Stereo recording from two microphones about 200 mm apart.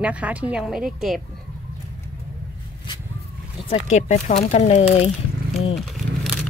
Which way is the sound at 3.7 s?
35° left (ahead or behind).